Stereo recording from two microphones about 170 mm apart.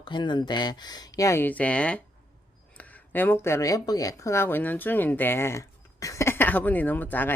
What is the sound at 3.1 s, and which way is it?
Speech, 15° left (ahead or behind).